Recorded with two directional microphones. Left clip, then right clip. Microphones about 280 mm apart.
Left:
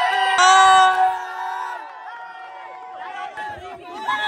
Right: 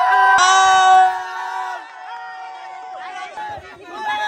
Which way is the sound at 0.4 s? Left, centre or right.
Centre.